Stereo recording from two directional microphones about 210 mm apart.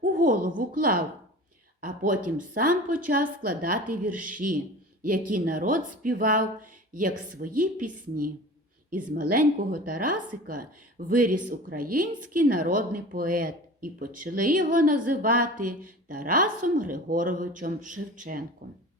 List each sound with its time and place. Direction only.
0.0 s a woman's voice: 40° right (ahead or behind)